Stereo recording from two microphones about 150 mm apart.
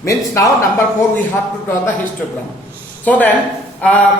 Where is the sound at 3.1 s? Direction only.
10° left (ahead or behind).